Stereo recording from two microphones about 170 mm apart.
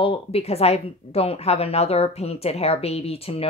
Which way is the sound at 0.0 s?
35° left (ahead or behind).